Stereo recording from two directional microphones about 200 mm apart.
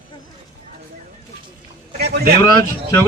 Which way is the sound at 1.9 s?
55° right (ahead or behind).